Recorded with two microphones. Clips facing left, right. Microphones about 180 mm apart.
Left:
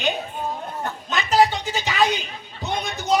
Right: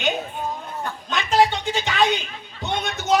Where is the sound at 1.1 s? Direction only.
Centre (ahead or behind).